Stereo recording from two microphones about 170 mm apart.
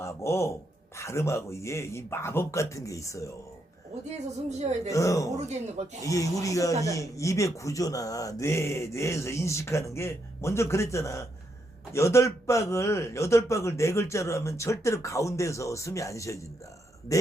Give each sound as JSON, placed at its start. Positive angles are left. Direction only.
{"t": 0.0, "sound": "a man's voice", "side_deg": 15}
{"t": 4.4, "sound": "speech", "side_deg": -40}
{"t": 4.9, "sound": "speech", "side_deg": 20}
{"t": 5.4, "sound": "speech", "side_deg": -40}
{"t": 6.0, "sound": "a man's voice", "side_deg": 20}